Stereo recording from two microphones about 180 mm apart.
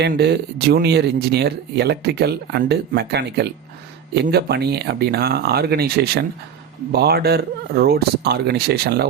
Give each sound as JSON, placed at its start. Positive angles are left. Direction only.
{"t": 0.0, "sound": "speech", "side_deg": -65}